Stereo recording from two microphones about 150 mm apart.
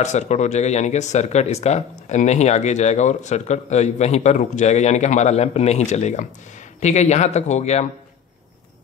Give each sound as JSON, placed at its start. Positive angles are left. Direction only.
{"t": 0.0, "sound": "speech", "side_deg": 50}